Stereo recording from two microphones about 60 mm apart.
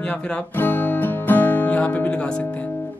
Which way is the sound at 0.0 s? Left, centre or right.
Centre.